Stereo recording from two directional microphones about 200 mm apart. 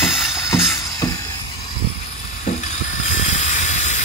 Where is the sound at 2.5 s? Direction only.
35° left (ahead or behind).